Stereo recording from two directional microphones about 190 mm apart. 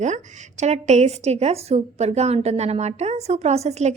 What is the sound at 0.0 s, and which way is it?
A woman's voice, 40° right (ahead or behind).